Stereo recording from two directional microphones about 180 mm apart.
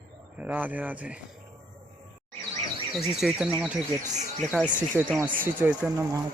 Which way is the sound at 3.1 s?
5° right (ahead or behind).